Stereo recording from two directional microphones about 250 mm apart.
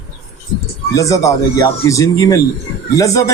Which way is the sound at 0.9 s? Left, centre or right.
Centre.